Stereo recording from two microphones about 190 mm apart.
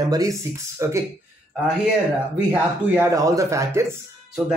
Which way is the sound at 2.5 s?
10° right (ahead or behind).